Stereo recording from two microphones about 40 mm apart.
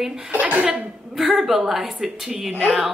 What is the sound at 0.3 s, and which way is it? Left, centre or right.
Speech, right.